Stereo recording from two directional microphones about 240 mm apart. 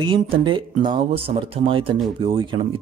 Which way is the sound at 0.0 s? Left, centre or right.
Right.